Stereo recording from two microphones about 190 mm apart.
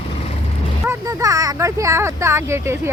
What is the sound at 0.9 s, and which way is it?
Speech, 20° right (ahead or behind).